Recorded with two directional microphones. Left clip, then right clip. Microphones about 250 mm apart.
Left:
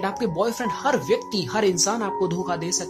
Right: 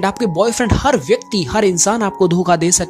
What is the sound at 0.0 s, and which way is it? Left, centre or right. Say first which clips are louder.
Chopping: right 8 dB; right.